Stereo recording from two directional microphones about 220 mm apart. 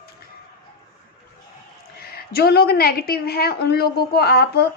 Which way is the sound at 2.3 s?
45° left (ahead or behind).